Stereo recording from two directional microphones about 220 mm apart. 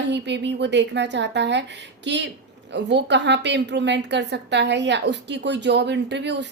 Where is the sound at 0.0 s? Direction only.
55° right (ahead or behind).